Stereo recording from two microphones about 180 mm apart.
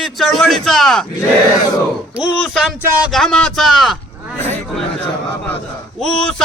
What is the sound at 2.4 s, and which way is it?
A man's voice, centre (ahead or behind).